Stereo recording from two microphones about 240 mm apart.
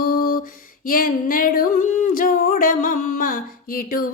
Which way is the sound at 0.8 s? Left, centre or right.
Left.